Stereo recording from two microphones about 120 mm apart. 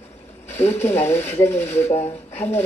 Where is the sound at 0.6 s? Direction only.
60° left (ahead or behind).